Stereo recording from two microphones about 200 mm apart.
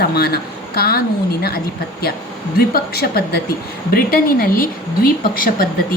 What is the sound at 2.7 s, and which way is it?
A woman's voice, 50° left (ahead or behind).